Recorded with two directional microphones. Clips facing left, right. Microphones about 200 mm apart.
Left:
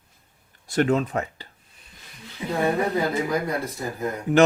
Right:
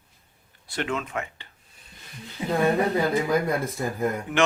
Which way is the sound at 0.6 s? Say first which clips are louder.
Left 8 dB; 40° left (ahead or behind).